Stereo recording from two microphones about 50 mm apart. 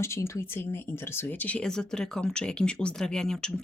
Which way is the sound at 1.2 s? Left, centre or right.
Left.